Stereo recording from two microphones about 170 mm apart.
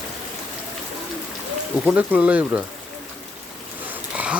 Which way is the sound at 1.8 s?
10° right (ahead or behind).